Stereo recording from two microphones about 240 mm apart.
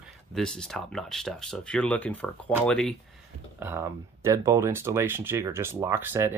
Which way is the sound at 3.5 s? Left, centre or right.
Centre.